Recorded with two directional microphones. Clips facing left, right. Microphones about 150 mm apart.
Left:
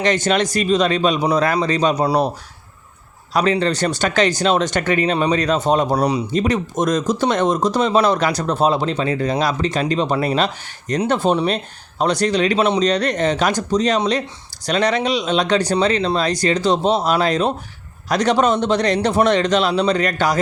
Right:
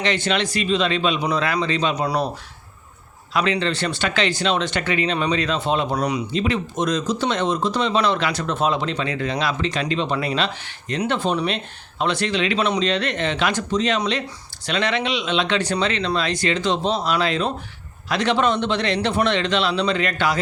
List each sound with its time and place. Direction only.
0.0 s speech: 45° left (ahead or behind)
3.3 s speech: 40° left (ahead or behind)
6.3 s speech: 45° left (ahead or behind)